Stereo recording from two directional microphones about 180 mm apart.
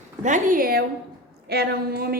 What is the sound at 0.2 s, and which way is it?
Speech, 45° right (ahead or behind).